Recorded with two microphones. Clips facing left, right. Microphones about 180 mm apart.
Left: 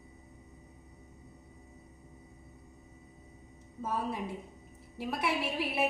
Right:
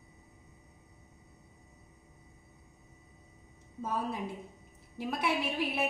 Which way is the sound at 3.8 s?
Centre (ahead or behind).